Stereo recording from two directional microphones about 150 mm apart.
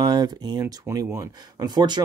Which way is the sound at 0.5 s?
20° right (ahead or behind).